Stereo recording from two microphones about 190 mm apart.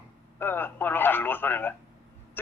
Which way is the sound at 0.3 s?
10° left (ahead or behind).